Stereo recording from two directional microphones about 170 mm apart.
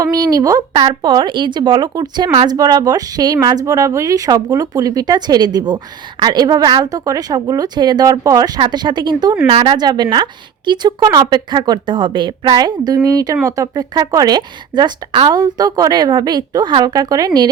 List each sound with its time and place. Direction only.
0.0 s speech: 20° right (ahead or behind)